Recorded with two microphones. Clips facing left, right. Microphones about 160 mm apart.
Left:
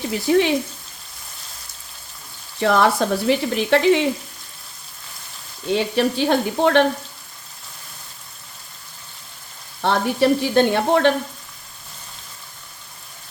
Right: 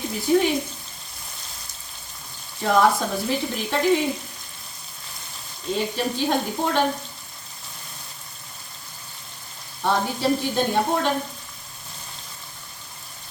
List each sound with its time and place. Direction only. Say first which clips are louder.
0.1 s speech: left 2 dB; 80° left
2.6 s speech: left 2 dB; 80° left
5.7 s frying: left 6 dB; 75° left (ahead or behind)
9.8 s frying: left 4 dB; 75° left (ahead or behind)